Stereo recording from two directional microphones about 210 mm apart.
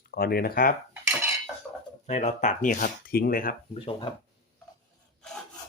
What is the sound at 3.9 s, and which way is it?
Speech, 25° left (ahead or behind).